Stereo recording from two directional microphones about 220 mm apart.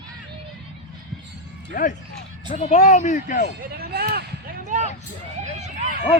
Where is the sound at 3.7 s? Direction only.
45° right (ahead or behind).